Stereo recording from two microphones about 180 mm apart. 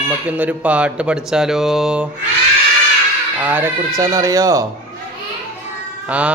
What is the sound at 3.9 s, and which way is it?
Speech, 20° right (ahead or behind).